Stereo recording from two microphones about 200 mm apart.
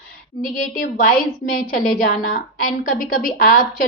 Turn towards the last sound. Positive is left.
turn(degrees=40)  # may be behind; listen again after turning